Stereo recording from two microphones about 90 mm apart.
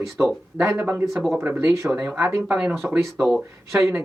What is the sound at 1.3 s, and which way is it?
Speech, 25° right (ahead or behind).